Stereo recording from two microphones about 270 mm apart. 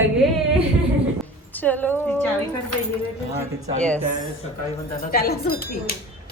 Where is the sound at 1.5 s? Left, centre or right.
Centre.